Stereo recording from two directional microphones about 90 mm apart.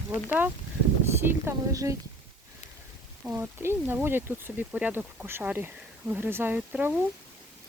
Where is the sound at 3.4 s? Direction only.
25° right (ahead or behind).